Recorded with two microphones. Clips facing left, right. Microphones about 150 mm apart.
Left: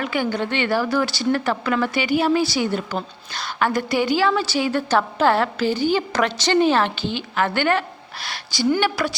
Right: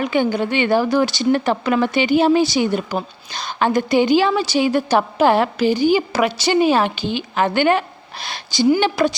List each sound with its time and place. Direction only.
0.0 s a woman's voice: 20° right (ahead or behind)